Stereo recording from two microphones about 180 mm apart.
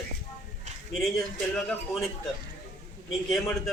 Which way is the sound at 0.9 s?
Centre (ahead or behind).